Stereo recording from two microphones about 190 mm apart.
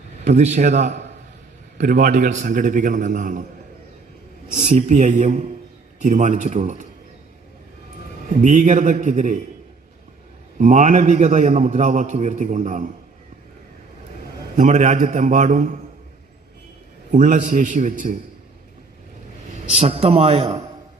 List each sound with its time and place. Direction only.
0.3 s a man's voice: 40° right (ahead or behind)
4.6 s a man's voice: 40° right (ahead or behind)
8.4 s a man's voice: 40° right (ahead or behind)
10.6 s a man's voice: 40° right (ahead or behind)
14.5 s a man's voice: 40° right (ahead or behind)
17.1 s a man's voice: 40° right (ahead or behind)
19.7 s a man's voice: 30° right (ahead or behind)